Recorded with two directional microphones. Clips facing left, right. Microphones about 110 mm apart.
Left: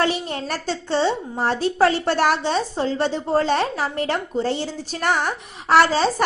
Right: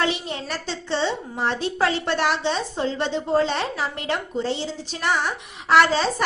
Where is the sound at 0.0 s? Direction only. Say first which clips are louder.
Left 3 dB; 45° left (ahead or behind).